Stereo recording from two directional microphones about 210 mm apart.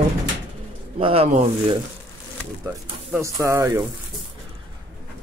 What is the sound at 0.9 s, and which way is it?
Speech, 25° right (ahead or behind).